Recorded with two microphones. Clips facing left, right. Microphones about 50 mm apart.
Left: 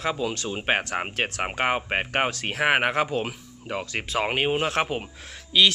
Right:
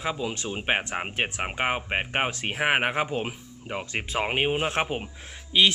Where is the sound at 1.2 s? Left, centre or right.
Centre.